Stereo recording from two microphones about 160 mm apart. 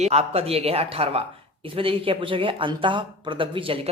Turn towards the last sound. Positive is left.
turn(degrees=-35)  # may be behind; listen again after turning